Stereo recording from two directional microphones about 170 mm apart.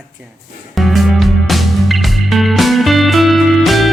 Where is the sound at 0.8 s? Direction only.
Centre (ahead or behind).